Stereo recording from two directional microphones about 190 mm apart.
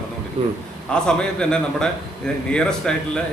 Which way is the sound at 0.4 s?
30° right (ahead or behind).